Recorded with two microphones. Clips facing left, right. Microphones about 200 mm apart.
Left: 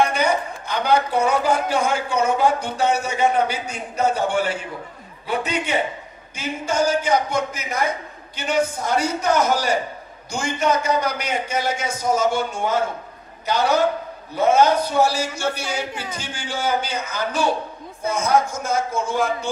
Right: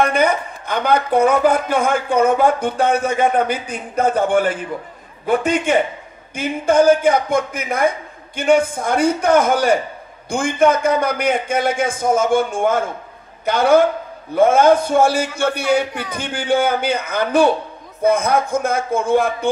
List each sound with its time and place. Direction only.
0.0 s a man's voice: 55° right (ahead or behind)